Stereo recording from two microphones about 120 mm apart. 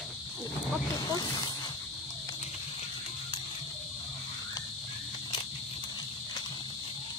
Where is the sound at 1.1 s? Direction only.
35° left (ahead or behind).